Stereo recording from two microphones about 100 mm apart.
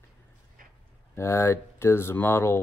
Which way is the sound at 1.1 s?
25° left (ahead or behind).